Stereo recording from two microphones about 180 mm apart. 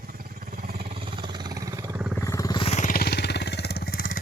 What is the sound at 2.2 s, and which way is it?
Vehicle, 15° left (ahead or behind).